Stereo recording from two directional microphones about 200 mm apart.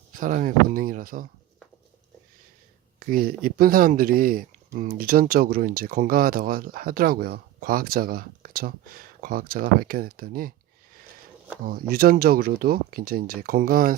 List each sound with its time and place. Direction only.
0.2 s speech: 40° right (ahead or behind)
3.1 s speech: 45° right (ahead or behind)
11.6 s speech: 45° right (ahead or behind)